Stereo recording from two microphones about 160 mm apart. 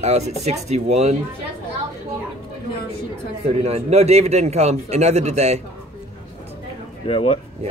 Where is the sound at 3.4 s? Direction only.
40° right (ahead or behind).